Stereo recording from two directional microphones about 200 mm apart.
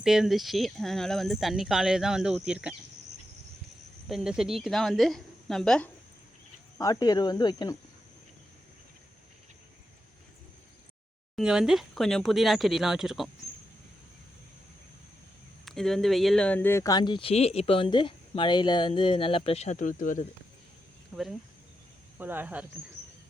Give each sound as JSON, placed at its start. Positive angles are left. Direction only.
{"t": 0.0, "sound": "speech", "side_deg": 0}
{"t": 4.1, "sound": "speech", "side_deg": -5}
{"t": 6.7, "sound": "speech", "side_deg": 20}
{"t": 11.3, "sound": "speech", "side_deg": 0}
{"t": 15.6, "sound": "speech", "side_deg": 0}
{"t": 21.1, "sound": "speech", "side_deg": 0}
{"t": 22.2, "sound": "speech", "side_deg": -10}